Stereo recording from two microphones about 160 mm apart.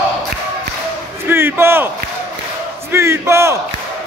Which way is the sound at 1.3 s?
15° right (ahead or behind).